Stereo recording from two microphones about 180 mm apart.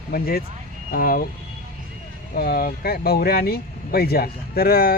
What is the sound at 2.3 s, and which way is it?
Speech, 60° left (ahead or behind).